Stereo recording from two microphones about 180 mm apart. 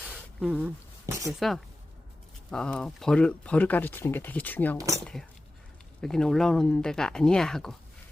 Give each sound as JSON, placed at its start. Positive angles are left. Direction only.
{"t": 0.3, "sound": "speech", "side_deg": -5}
{"t": 4.8, "sound": "speech", "side_deg": -20}
{"t": 6.0, "sound": "speech", "side_deg": 5}